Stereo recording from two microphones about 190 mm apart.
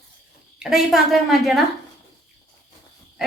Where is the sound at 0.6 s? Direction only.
Centre (ahead or behind).